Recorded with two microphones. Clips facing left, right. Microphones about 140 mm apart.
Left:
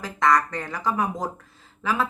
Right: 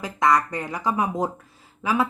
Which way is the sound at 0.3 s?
15° right (ahead or behind).